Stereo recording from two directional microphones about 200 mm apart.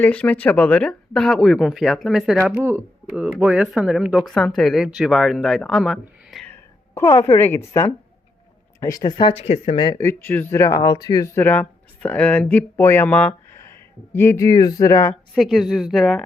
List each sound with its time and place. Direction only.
0.0 s speech: 5° left (ahead or behind)
15.4 s speech: centre (ahead or behind)